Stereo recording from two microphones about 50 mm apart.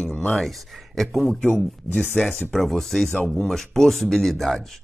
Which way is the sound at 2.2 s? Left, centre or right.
Left.